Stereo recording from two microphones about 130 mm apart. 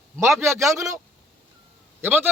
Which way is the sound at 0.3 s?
20° right (ahead or behind).